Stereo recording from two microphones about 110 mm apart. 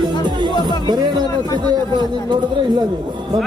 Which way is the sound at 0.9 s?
40° right (ahead or behind).